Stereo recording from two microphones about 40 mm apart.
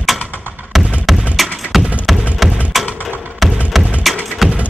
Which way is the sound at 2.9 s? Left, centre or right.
Left.